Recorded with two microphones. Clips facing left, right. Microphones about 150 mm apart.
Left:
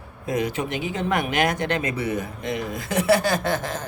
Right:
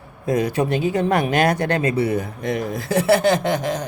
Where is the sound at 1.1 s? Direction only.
45° right (ahead or behind).